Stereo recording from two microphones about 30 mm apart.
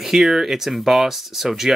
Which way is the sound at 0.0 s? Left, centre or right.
Centre.